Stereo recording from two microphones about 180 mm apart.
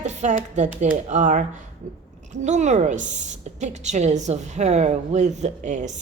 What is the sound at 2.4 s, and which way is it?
A woman's voice, 40° right (ahead or behind).